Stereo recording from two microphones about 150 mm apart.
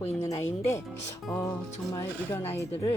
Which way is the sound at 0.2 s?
15° left (ahead or behind).